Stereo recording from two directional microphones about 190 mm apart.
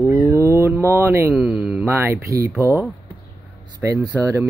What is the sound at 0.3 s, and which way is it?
Speech, 15° right (ahead or behind).